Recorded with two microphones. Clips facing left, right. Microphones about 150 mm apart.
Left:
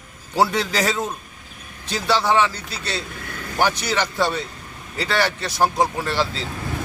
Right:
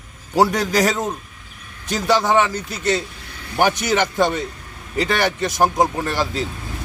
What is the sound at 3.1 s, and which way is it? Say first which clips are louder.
Vehicle: left 6 dB; 55° left (ahead or behind).